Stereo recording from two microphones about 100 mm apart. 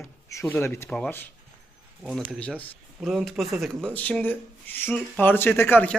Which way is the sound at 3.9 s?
15° left (ahead or behind).